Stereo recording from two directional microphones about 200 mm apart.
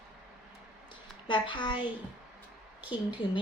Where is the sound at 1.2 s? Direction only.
25° left (ahead or behind).